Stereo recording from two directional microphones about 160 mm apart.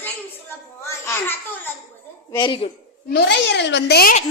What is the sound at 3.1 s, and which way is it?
Speech, 90° left.